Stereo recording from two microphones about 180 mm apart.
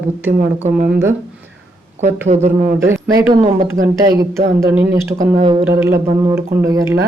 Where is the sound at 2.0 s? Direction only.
40° right (ahead or behind).